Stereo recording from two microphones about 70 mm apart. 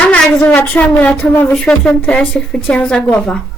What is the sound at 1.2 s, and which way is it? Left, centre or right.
Speech, left.